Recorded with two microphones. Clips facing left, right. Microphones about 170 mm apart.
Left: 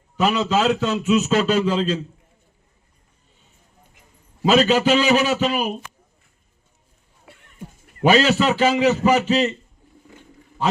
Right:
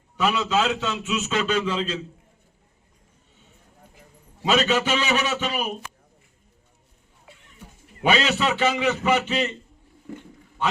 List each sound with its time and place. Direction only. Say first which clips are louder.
0.2 s a man's voice: left 3 dB; 35° left (ahead or behind)
4.4 s a man's voice: left 5 dB; 35° left (ahead or behind)
8.0 s a man's voice: left 6 dB; 40° left (ahead or behind)